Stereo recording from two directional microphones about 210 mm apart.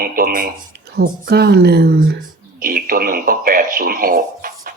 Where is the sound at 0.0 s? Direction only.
40° right (ahead or behind).